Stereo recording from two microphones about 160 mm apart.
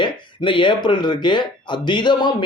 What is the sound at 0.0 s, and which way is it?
Speech, 30° left (ahead or behind).